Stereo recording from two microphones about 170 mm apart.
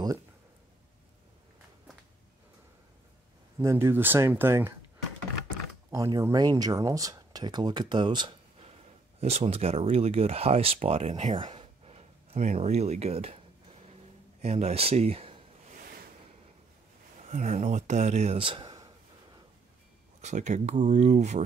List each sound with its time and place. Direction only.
3.5 s speech: 15° right (ahead or behind)
5.9 s speech: 20° right (ahead or behind); by 11.3 s 40° right (ahead or behind)
11.3 s speech: 30° right (ahead or behind)
14.4 s speech: 40° right (ahead or behind)
17.3 s speech: 45° right (ahead or behind); by 18.9 s 25° right (ahead or behind)
20.2 s speech: 45° right (ahead or behind)